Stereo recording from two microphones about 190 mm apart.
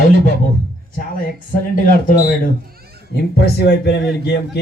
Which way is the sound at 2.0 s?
45° left (ahead or behind).